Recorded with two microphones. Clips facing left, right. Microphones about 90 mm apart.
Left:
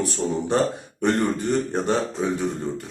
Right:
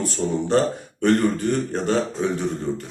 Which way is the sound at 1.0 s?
20° left (ahead or behind).